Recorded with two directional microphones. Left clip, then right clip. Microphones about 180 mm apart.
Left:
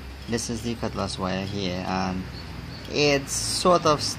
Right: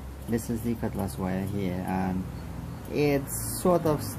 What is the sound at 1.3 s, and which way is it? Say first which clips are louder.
Speech: left 4 dB; 5° left (ahead or behind).